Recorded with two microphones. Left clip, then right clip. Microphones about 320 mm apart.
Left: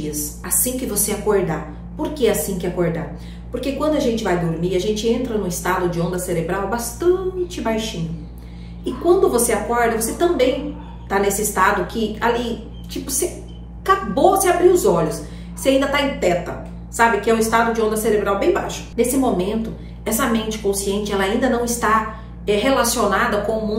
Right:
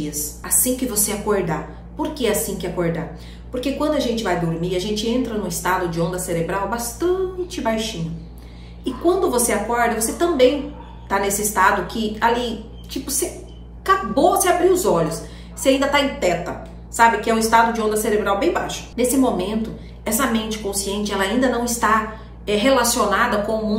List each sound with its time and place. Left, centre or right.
0.1 s a woman's voice: centre
9.3 s a woman's voice: centre